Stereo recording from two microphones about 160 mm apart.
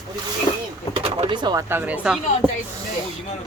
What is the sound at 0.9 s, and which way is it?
Speech, 35° right (ahead or behind).